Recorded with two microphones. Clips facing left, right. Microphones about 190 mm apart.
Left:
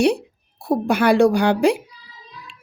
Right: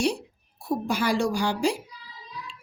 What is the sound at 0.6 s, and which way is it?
A woman's voice, 60° left (ahead or behind).